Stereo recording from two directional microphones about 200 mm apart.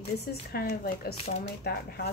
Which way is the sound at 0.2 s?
50° left (ahead or behind).